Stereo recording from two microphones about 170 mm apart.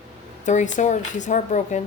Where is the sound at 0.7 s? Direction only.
45° left (ahead or behind).